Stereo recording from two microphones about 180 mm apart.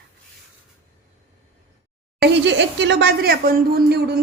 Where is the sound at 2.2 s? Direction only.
80° right.